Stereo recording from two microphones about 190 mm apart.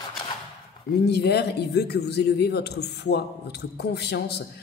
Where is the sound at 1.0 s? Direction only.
60° left (ahead or behind).